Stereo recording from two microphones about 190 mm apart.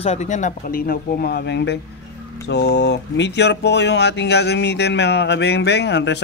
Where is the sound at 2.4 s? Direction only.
60° left (ahead or behind).